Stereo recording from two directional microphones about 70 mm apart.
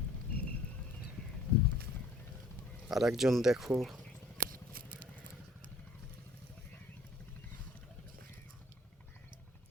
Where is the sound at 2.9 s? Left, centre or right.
Centre.